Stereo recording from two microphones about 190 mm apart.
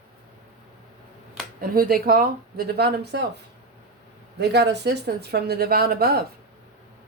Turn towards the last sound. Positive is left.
turn(degrees=-55)  # may be behind; listen again after turning